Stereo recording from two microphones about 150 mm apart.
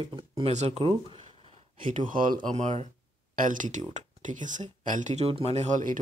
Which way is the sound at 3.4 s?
60° right (ahead or behind).